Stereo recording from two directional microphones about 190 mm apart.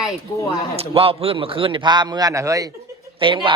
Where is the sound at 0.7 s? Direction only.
30° right (ahead or behind).